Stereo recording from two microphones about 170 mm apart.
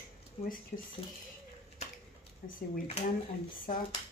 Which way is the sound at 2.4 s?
60° left (ahead or behind).